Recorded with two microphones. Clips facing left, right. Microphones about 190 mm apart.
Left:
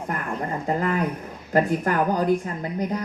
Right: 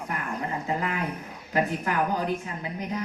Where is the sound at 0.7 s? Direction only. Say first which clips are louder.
Left 7 dB; 45° left (ahead or behind).